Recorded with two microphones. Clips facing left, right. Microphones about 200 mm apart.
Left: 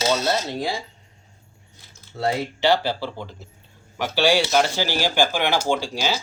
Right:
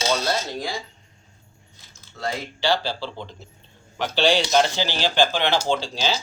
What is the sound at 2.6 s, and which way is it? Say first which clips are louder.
Speech: left 3 dB; 20° left (ahead or behind).